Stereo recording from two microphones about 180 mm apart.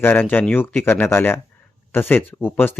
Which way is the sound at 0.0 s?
10° left (ahead or behind).